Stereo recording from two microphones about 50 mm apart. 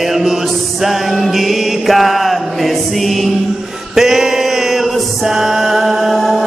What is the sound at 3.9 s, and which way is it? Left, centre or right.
Chant, centre.